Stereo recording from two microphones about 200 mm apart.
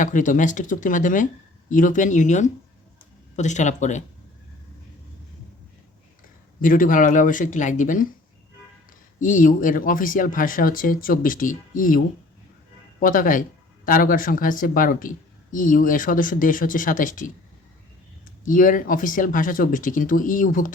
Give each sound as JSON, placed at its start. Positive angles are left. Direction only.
{"t": 0.0, "sound": "speech", "side_deg": 40}
{"t": 6.6, "sound": "speech", "side_deg": 40}
{"t": 9.2, "sound": "speech", "side_deg": 40}
{"t": 18.4, "sound": "speech", "side_deg": 40}